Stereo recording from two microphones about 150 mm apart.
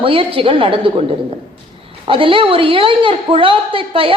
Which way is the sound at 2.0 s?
35° right (ahead or behind).